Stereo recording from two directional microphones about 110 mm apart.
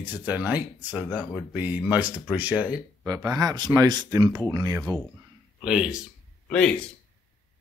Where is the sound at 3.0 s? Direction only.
35° right (ahead or behind).